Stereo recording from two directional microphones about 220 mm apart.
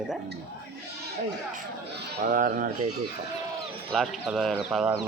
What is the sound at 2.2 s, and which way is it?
Speech, 40° right (ahead or behind).